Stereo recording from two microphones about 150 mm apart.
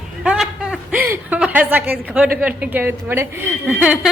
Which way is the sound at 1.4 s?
10° right (ahead or behind).